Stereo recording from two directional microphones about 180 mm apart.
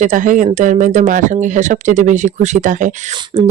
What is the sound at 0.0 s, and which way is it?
Speech, 45° right (ahead or behind).